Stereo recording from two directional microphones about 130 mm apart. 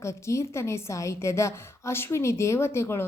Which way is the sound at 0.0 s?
20° left (ahead or behind).